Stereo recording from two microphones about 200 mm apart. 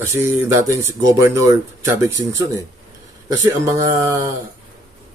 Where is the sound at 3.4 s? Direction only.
15° right (ahead or behind).